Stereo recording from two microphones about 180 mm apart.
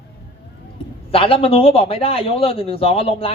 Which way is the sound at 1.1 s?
30° left (ahead or behind).